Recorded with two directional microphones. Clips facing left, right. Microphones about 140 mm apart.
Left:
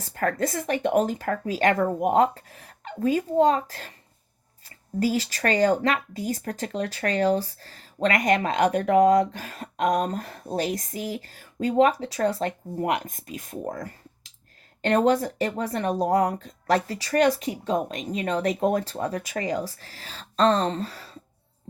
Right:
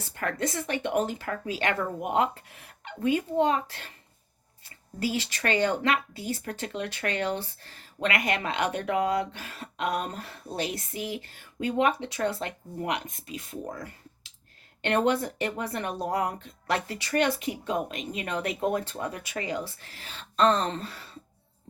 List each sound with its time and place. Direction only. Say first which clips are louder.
0.0 s speech: left 5 dB; 40° left (ahead or behind)
4.9 s speech: left 5 dB; 40° left (ahead or behind)